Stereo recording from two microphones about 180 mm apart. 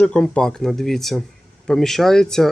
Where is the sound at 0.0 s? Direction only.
5° left (ahead or behind).